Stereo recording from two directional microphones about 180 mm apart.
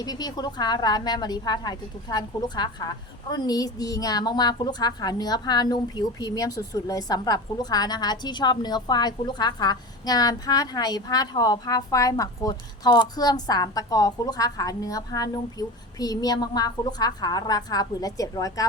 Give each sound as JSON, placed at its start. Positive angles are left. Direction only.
{"t": 0.0, "sound": "a woman's voice", "side_deg": 20}